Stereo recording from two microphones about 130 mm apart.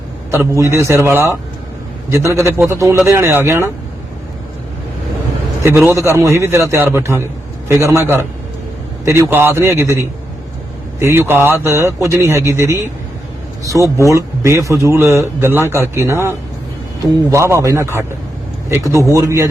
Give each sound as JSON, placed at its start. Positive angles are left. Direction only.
{"t": 0.3, "sound": "a man's voice", "side_deg": -20}
{"t": 5.6, "sound": "a man's voice", "side_deg": -20}